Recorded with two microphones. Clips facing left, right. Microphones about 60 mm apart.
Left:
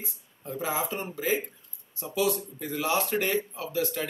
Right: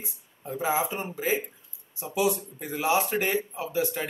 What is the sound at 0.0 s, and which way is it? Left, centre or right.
Speech, centre.